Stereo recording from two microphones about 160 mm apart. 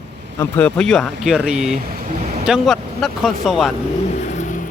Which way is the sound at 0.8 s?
5° left (ahead or behind).